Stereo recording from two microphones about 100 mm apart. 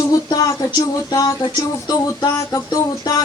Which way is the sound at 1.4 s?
50° left (ahead or behind).